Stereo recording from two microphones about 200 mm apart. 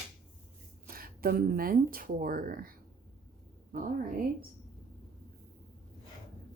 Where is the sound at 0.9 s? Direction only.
45° right (ahead or behind).